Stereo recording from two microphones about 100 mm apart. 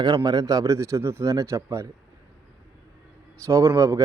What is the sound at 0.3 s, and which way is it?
Speech, 40° right (ahead or behind).